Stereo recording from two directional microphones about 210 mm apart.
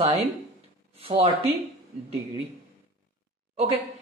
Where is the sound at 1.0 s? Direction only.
30° right (ahead or behind).